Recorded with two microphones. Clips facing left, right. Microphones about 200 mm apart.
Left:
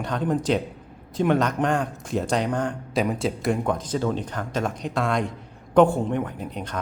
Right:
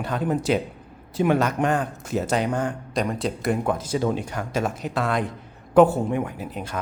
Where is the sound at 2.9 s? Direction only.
5° left (ahead or behind).